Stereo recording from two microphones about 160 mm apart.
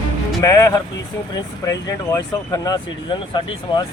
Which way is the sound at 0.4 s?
20° left (ahead or behind).